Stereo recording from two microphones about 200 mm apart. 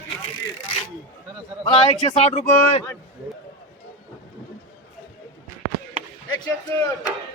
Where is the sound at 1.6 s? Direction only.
25° left (ahead or behind).